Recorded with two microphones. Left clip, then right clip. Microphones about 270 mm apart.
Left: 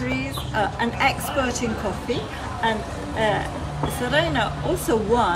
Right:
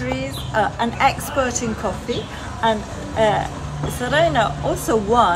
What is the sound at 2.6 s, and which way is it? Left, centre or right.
A woman's voice, centre.